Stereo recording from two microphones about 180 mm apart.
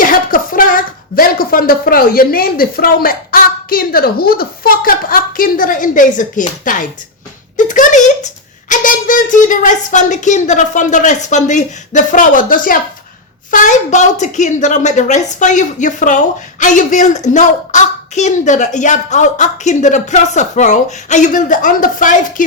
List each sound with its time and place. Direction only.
0.0 s a woman's voice: 50° left (ahead or behind)